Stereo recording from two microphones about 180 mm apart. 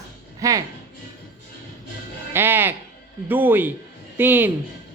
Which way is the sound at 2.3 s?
10° right (ahead or behind).